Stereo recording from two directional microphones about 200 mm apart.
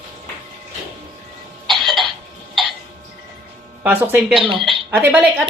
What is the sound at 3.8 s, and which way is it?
Speech, 10° right (ahead or behind).